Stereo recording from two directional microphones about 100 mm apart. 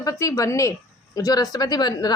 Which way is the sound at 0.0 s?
35° left (ahead or behind).